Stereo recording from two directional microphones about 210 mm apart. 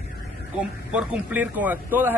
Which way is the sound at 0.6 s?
5° right (ahead or behind).